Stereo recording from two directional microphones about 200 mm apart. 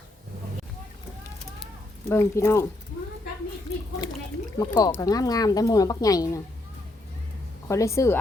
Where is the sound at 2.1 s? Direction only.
15° left (ahead or behind).